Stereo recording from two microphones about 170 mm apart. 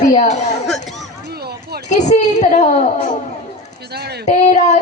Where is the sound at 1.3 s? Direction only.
70° right (ahead or behind).